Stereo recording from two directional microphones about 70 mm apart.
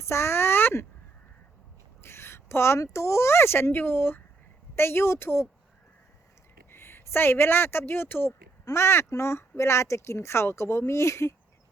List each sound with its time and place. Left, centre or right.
0.0 s a sound: left
2.0 s speech: left
6.7 s speech: left